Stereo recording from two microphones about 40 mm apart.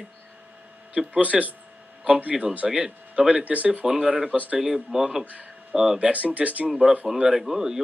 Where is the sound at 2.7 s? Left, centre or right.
Right.